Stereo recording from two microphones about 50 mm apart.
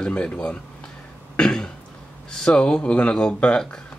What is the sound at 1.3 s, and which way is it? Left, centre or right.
Cough, centre.